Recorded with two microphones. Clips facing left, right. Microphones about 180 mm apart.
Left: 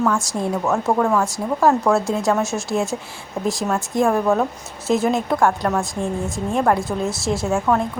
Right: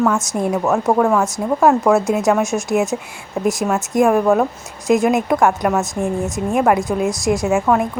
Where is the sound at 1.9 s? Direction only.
20° right (ahead or behind).